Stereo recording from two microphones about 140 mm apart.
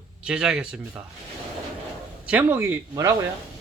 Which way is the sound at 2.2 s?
15° right (ahead or behind).